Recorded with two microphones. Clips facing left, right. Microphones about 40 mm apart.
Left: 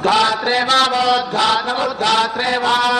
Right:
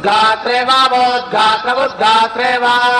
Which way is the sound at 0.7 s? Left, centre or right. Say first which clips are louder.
Right 4 dB; right.